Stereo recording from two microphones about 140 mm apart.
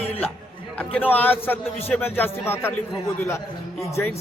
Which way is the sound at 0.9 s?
10° left (ahead or behind).